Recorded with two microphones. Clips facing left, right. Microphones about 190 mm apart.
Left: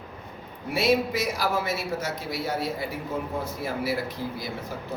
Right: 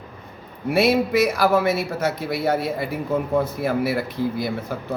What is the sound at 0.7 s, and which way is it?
A man's voice, 60° right (ahead or behind).